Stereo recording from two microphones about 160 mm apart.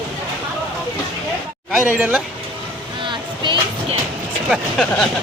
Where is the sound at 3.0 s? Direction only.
30° right (ahead or behind).